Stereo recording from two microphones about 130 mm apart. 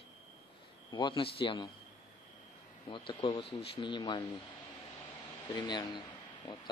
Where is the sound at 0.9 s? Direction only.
40° left (ahead or behind).